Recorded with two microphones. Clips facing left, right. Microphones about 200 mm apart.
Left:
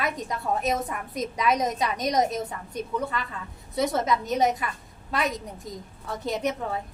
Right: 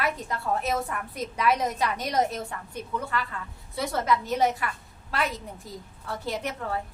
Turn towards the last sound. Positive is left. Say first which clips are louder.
# left 3 dB
turn(degrees=20)  # may be behind; listen again after turning